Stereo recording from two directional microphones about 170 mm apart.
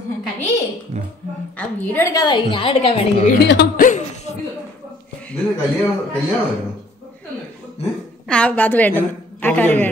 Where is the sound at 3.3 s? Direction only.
75° left (ahead or behind).